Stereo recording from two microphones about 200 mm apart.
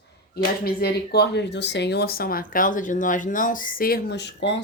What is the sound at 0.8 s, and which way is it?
Speech, 55° left (ahead or behind).